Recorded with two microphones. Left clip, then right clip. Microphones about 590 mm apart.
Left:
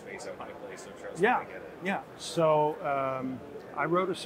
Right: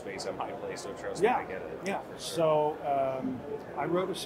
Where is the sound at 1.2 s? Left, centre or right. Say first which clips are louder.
Left 1 dB; left.